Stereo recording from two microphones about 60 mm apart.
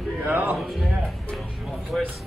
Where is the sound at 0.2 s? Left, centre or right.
Right.